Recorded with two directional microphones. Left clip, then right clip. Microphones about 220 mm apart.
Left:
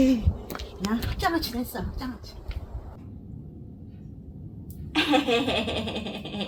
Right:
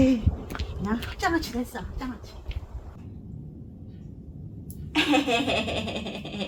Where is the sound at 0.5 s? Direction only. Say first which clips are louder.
Left 1 dB; 15° left (ahead or behind).